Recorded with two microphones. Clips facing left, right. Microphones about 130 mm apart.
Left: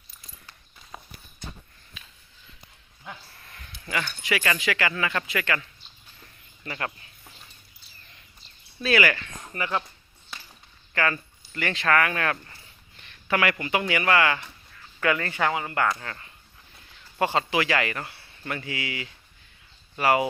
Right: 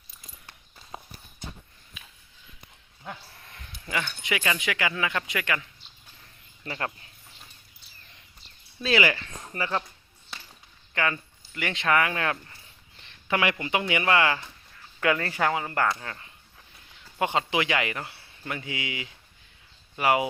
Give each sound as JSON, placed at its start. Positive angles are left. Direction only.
{"t": 0.9, "sound": "clip-clop", "side_deg": -25}
{"t": 3.5, "sound": "speech", "side_deg": -20}
{"t": 6.7, "sound": "speech", "side_deg": -25}
{"t": 8.8, "sound": "speech", "side_deg": -20}
{"t": 10.9, "sound": "speech", "side_deg": -20}
{"t": 16.0, "sound": "speech", "side_deg": -15}